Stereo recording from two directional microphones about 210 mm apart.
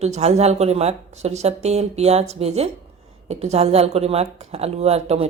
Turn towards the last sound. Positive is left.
turn(degrees=-30)  # may be behind; listen again after turning